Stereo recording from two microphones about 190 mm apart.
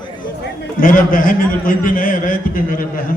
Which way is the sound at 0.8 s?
45° left (ahead or behind).